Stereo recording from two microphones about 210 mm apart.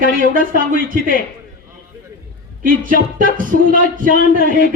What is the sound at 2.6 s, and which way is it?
Speech, 40° right (ahead or behind).